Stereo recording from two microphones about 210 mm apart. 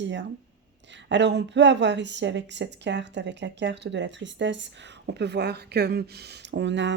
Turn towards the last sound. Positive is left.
turn(degrees=-55)  # may be behind; listen again after turning